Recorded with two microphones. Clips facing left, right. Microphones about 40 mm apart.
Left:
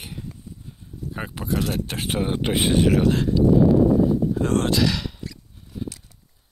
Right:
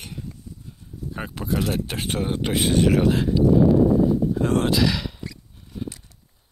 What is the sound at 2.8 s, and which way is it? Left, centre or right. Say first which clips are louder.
Speech: right 1 dB; centre.